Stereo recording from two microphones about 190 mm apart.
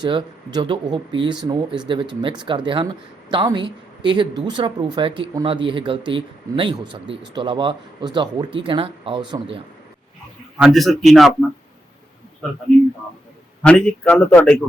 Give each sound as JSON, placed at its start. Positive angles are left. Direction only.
{"t": 0.0, "sound": "speech", "side_deg": -25}
{"t": 10.6, "sound": "a man's voice", "side_deg": 0}
{"t": 13.6, "sound": "a man's voice", "side_deg": 5}